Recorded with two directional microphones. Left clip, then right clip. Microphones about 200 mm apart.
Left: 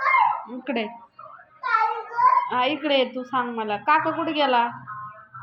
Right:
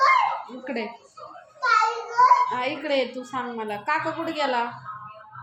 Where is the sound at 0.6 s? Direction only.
25° left (ahead or behind).